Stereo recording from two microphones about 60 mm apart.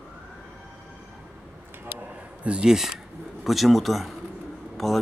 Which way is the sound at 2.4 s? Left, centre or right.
Centre.